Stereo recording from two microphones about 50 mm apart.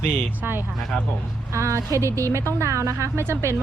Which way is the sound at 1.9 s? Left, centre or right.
Right.